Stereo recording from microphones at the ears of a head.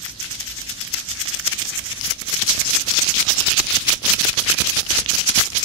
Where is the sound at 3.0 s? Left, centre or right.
Right.